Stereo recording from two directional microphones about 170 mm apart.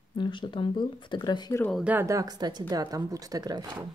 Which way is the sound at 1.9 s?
20° right (ahead or behind).